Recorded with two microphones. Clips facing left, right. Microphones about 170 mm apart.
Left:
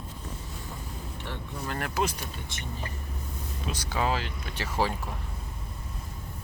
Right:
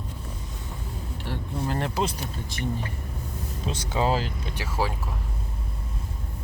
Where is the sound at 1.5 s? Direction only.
30° right (ahead or behind).